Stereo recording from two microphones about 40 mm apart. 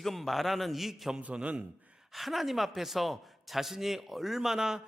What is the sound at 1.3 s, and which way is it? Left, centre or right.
Speech, right.